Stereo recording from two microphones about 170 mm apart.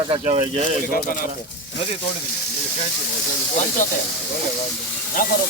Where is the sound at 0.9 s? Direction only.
55° left (ahead or behind).